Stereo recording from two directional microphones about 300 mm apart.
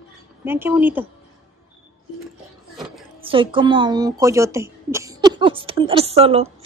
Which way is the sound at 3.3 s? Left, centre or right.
Centre.